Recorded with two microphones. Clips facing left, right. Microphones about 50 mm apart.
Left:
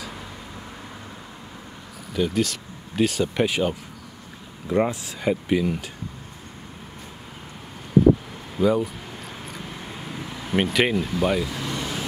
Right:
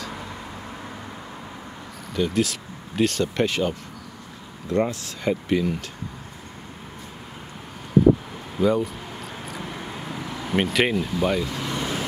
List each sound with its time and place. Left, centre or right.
2.1 s speech: centre
8.5 s speech: centre
10.3 s speech: centre
11.6 s vehicle: right